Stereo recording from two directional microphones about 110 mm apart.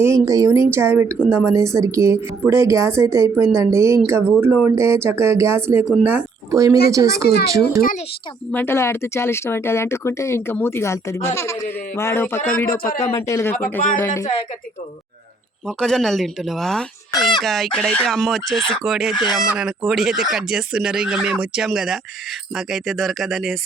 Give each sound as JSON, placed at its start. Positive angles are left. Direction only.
{"t": 0.0, "sound": "a woman's voice", "side_deg": -30}
{"t": 6.5, "sound": "speech", "side_deg": -30}
{"t": 8.5, "sound": "speech", "side_deg": 20}
{"t": 15.6, "sound": "speech", "side_deg": 5}